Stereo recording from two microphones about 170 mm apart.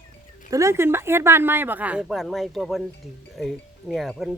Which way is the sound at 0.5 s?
15° right (ahead or behind).